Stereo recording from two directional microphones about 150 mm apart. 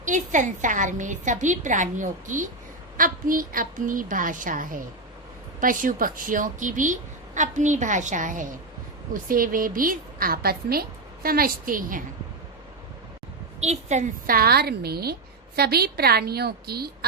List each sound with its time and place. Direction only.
0.0 s a woman's voice: 55° right (ahead or behind)
13.6 s a woman's voice: 50° right (ahead or behind); by 17.1 s 90° right